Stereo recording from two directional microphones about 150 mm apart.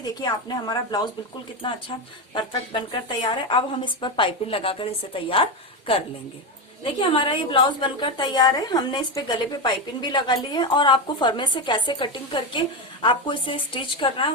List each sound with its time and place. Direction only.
0.2 s a woman's voice: 25° left (ahead or behind)